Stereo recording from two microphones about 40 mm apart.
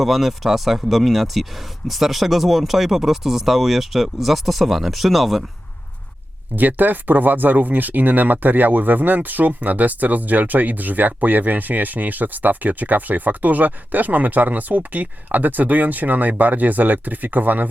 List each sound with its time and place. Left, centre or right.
0.0 s speech: centre
6.6 s speech: right